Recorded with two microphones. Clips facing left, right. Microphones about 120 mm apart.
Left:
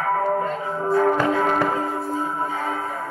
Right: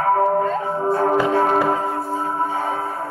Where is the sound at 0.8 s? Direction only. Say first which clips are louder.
Even; 30° right (ahead or behind).